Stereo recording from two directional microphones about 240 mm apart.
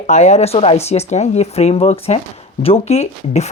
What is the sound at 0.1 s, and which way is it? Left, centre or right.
Speech, left.